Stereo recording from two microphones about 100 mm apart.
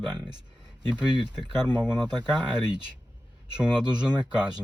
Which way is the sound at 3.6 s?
10° right (ahead or behind).